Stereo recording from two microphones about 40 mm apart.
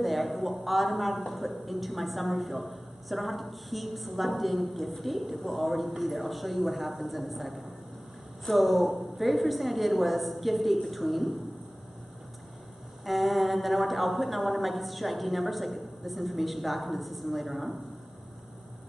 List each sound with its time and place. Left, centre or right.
0.0 s a man's voice: centre
13.0 s a man's voice: centre